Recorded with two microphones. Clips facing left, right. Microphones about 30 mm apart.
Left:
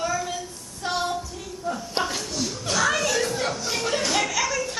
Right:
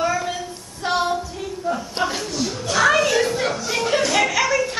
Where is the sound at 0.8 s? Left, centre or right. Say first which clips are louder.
Right 5 dB; right.